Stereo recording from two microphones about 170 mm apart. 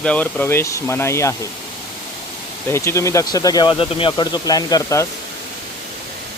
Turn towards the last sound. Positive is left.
turn(degrees=20)  # may be behind; listen again after turning